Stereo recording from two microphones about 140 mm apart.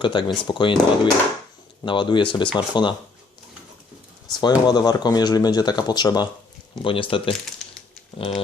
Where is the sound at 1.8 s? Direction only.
35° left (ahead or behind).